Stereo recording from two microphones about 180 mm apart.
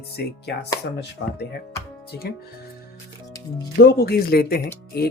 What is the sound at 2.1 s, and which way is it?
Speech, 60° left (ahead or behind).